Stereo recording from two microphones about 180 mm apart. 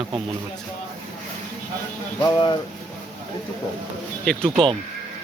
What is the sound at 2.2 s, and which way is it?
Speech, 25° left (ahead or behind).